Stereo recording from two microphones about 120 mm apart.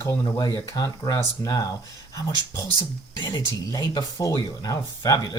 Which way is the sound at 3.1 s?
35° left (ahead or behind).